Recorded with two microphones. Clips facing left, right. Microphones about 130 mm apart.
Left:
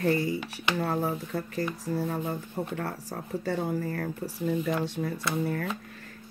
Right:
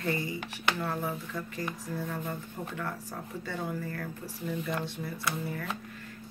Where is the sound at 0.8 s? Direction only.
40° left (ahead or behind).